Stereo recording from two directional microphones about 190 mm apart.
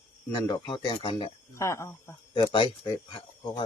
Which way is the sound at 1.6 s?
15° left (ahead or behind).